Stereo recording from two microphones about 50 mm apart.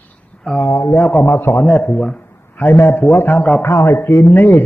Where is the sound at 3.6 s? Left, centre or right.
Left.